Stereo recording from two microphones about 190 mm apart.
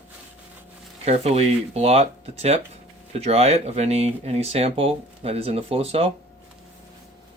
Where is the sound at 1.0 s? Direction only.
35° right (ahead or behind).